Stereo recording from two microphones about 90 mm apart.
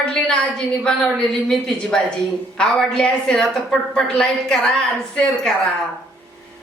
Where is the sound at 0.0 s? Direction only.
10° left (ahead or behind).